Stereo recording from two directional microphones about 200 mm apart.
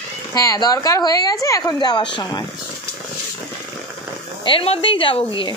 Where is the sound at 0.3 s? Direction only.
20° left (ahead or behind).